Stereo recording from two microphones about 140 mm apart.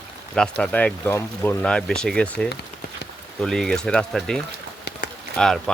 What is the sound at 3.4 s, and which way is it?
Speech, 5° left (ahead or behind).